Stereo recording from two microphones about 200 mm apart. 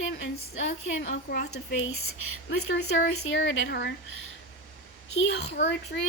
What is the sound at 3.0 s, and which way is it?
Speech, 65° left (ahead or behind).